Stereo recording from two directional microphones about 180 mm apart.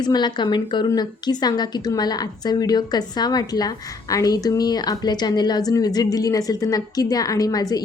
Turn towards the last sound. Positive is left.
turn(degrees=20)  # may be behind; listen again after turning